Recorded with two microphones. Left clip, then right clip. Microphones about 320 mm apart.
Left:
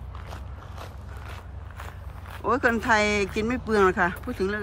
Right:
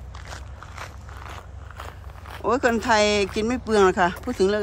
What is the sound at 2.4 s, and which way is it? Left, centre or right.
Speech, centre.